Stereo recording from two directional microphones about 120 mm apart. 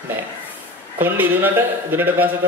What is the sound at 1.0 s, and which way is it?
A man's voice, 15° right (ahead or behind).